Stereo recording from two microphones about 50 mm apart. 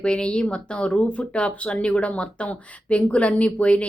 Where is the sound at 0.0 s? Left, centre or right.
Centre.